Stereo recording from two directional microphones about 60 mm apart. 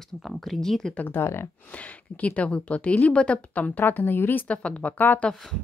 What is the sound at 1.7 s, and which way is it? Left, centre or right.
A woman's voice, left.